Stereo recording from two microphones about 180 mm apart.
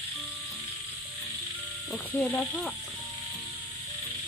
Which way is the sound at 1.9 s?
5° left (ahead or behind).